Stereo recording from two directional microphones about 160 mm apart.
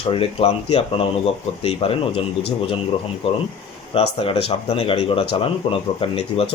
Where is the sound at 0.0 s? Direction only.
35° left (ahead or behind).